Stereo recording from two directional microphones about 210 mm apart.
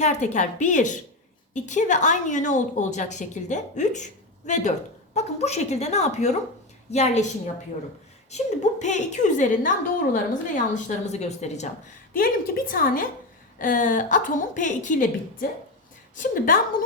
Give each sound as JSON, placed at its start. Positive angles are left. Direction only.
{"t": 0.0, "sound": "a woman's voice", "side_deg": 35}
{"t": 8.8, "sound": "a woman's voice", "side_deg": 35}